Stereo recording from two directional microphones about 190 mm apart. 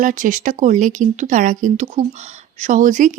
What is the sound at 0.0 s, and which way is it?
A woman's voice, 45° right (ahead or behind).